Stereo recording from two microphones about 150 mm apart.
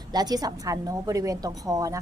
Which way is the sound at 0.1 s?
25° right (ahead or behind).